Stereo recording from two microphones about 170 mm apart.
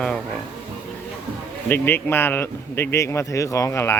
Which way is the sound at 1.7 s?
10° left (ahead or behind).